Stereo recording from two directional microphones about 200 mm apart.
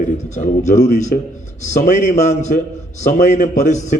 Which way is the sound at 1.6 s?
35° left (ahead or behind).